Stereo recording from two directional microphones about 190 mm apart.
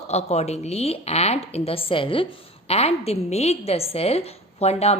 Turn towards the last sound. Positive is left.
turn(degrees=35)  # may be behind; listen again after turning